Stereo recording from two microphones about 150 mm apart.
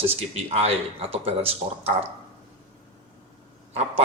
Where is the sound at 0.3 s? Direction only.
45° right (ahead or behind).